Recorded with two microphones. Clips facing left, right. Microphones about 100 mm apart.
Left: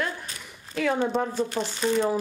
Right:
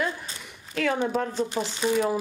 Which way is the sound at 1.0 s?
5° left (ahead or behind).